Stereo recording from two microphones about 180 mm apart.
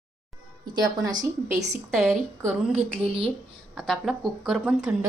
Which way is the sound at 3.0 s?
30° right (ahead or behind).